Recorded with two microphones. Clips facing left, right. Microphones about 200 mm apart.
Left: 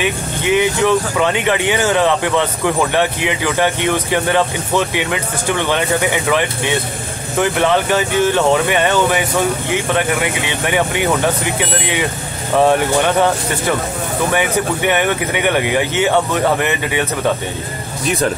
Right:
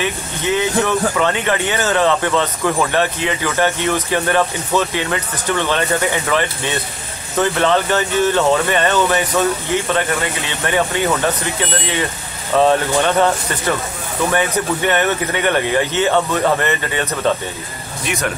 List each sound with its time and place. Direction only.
0.0 s speech: 15° left (ahead or behind)
12.5 s speech: 15° left (ahead or behind)
14.3 s speech: 10° left (ahead or behind)
18.0 s speech: 30° left (ahead or behind)